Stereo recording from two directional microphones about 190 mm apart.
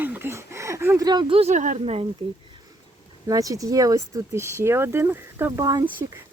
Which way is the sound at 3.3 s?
20° right (ahead or behind).